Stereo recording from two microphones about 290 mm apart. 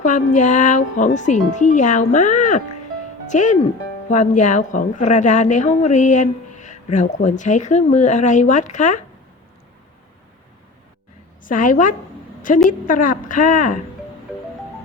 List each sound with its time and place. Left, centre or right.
0.0 s a woman's voice: left
11.4 s a woman's voice: left